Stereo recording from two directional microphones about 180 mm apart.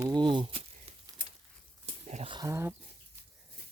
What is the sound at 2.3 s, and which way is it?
Speech, 20° right (ahead or behind).